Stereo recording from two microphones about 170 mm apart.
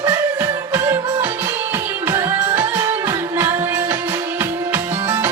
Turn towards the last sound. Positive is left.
turn(degrees=-15)  # may be behind; listen again after turning